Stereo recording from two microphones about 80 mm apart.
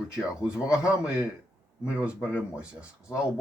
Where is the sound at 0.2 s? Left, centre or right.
Centre.